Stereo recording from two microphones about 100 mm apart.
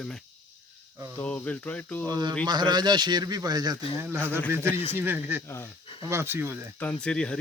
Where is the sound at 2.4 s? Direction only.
45° right (ahead or behind).